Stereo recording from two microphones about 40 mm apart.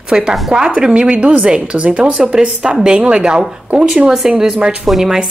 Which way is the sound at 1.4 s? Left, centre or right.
Right.